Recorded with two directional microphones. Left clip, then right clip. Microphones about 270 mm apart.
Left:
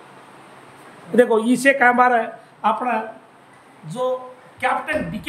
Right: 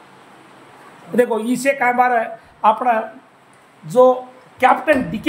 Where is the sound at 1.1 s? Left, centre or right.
Centre.